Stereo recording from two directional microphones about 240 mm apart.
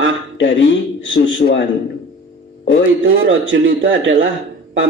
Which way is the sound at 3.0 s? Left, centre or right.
Right.